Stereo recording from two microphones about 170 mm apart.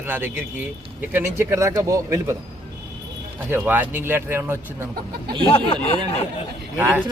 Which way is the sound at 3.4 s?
10° right (ahead or behind).